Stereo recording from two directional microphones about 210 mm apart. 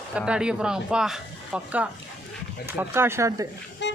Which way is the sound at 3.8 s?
60° left (ahead or behind).